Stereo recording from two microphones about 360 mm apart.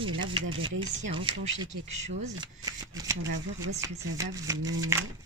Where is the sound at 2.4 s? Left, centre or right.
Centre.